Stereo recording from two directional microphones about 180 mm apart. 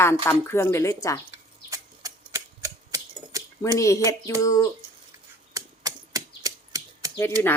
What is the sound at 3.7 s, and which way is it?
Speech, 15° left (ahead or behind).